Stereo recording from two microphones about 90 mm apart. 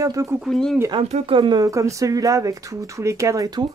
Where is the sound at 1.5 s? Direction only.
40° right (ahead or behind).